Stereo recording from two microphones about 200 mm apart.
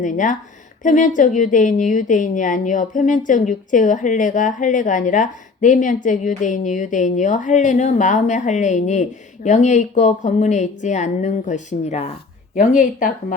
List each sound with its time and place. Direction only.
0.0 s a woman's voice: 40° left (ahead or behind)